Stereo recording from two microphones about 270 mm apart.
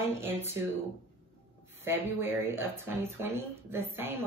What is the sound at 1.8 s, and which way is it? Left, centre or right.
A woman's voice, centre.